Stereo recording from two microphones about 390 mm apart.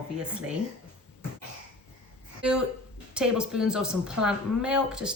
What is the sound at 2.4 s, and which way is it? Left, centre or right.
Speech, centre.